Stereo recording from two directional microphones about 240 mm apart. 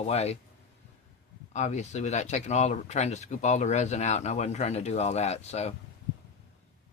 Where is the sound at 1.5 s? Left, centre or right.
Left.